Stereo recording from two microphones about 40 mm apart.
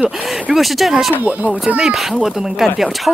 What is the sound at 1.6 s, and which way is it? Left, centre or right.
Speech, right.